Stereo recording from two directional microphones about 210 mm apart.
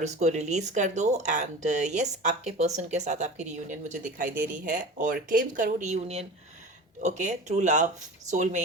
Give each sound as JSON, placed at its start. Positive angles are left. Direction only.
{"t": 0.0, "sound": "speech", "side_deg": -35}